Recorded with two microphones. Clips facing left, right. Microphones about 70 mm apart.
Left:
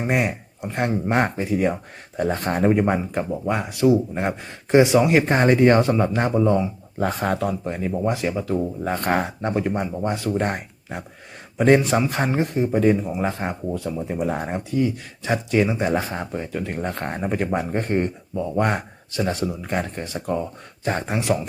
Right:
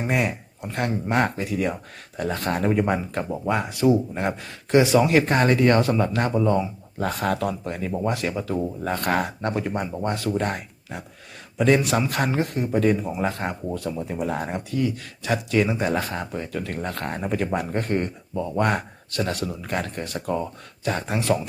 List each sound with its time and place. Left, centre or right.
0.1 s speech: centre
3.4 s speech: centre
4.1 s speech: centre
7.0 s speech: left
8.2 s speech: centre
8.8 s speech: left
9.4 s speech: centre
10.3 s speech: left
15.6 s speech: centre
20.8 s speech: left